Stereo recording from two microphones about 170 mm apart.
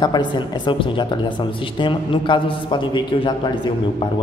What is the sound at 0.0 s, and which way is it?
A man's voice, 25° left (ahead or behind).